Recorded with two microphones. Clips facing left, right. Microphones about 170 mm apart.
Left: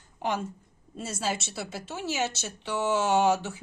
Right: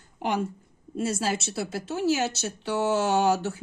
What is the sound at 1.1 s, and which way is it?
Speech, 50° right (ahead or behind).